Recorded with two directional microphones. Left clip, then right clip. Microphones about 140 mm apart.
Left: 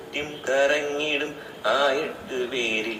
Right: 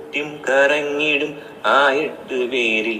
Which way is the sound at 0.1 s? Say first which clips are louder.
Right 6 dB; 40° right (ahead or behind).